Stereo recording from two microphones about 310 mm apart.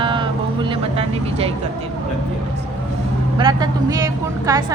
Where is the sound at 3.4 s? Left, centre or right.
Centre.